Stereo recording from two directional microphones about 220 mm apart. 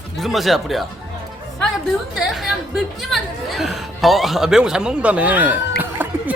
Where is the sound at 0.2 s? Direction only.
Centre (ahead or behind).